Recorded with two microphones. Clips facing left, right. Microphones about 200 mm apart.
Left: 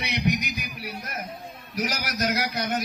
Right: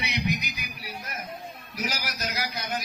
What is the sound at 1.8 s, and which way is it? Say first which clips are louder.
Speech: left 5 dB; 65° left (ahead or behind).